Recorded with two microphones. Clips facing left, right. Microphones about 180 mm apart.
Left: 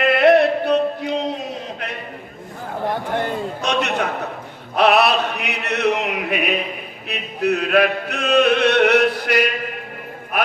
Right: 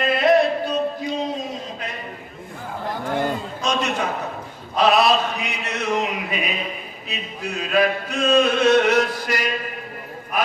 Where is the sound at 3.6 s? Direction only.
65° left (ahead or behind).